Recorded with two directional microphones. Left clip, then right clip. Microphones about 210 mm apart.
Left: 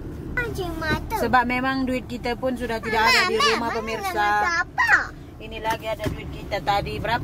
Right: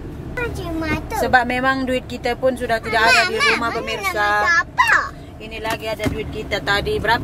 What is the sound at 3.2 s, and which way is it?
Speech, 35° left (ahead or behind).